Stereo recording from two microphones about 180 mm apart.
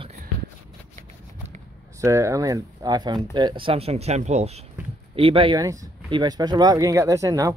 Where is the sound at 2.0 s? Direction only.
15° right (ahead or behind).